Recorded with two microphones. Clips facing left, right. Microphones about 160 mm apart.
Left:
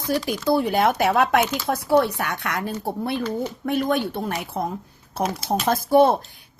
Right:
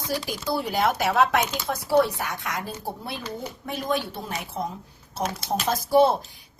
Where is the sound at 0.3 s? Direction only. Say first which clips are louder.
Left 7 dB; 55° left (ahead or behind).